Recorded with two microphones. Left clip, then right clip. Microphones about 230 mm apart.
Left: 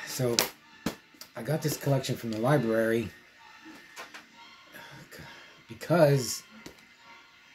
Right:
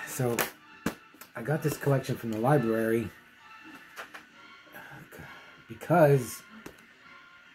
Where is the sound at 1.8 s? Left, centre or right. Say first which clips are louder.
Right 1 dB; centre.